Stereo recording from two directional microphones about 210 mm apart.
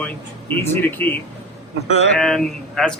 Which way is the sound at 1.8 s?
30° left (ahead or behind).